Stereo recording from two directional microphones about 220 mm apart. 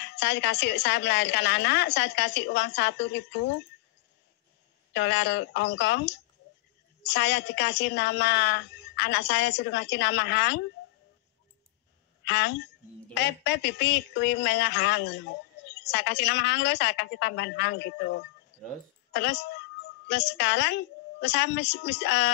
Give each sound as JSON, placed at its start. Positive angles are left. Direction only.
{"t": 0.0, "sound": "a woman's voice", "side_deg": 50}
{"t": 4.9, "sound": "a woman's voice", "side_deg": 50}
{"t": 12.3, "sound": "a woman's voice", "side_deg": 50}
{"t": 18.5, "sound": "a sound", "side_deg": 50}
{"t": 19.1, "sound": "a woman's voice", "side_deg": 50}